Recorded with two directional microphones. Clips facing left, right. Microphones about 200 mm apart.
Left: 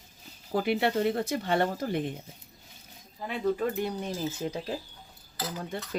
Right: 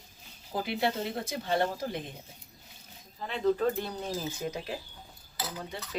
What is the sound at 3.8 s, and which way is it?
Speech, 15° left (ahead or behind).